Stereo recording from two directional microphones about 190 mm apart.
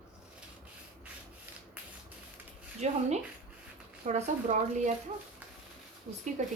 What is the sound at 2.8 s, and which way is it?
Speech, 35° right (ahead or behind).